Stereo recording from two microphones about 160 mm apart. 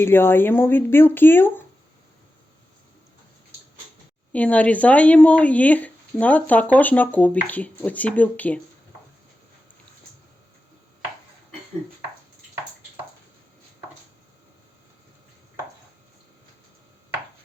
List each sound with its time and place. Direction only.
0.0 s speech: 15° left (ahead or behind)
4.3 s speech: 10° left (ahead or behind)